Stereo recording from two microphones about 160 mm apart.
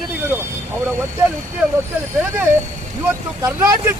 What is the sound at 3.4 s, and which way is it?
Speech, 15° right (ahead or behind).